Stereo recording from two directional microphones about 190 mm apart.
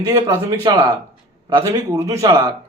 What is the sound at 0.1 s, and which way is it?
A man's voice, 15° right (ahead or behind).